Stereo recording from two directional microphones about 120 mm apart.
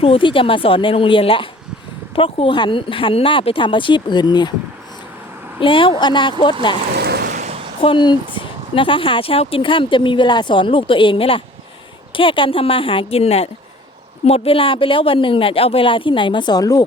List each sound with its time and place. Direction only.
0.0 s speech: 45° left (ahead or behind)
5.5 s speech: 45° left (ahead or behind)
7.3 s a sound: 75° right (ahead or behind)
7.8 s speech: 45° left (ahead or behind)